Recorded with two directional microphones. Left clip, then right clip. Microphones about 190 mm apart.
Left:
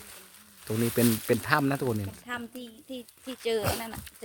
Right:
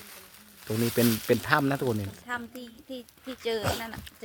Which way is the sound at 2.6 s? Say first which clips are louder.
Even; 40° left (ahead or behind).